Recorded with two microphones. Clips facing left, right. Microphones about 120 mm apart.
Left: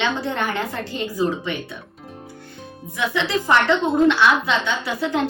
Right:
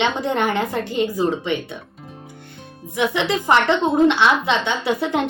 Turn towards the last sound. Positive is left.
turn(degrees=-20)  # may be behind; listen again after turning